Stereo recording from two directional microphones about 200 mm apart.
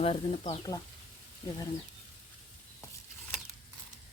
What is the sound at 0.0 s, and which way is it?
Speech, 30° left (ahead or behind).